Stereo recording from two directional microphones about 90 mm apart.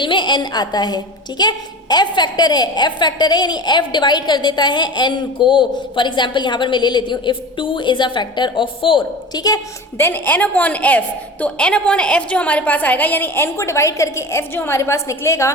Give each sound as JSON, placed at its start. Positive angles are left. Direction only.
{"t": 0.0, "sound": "a woman's voice", "side_deg": 60}
{"t": 9.3, "sound": "a woman's voice", "side_deg": 45}
{"t": 10.0, "sound": "a woman's voice", "side_deg": 20}